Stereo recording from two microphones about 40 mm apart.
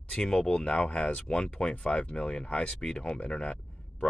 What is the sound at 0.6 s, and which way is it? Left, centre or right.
Speech, left.